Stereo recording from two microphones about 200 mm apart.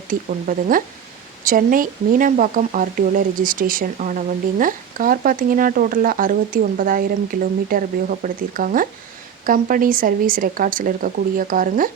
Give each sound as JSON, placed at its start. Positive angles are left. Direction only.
{"t": 0.1, "sound": "speech", "side_deg": -45}